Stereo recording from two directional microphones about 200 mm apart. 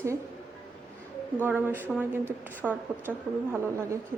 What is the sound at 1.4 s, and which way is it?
A woman's voice, 10° right (ahead or behind).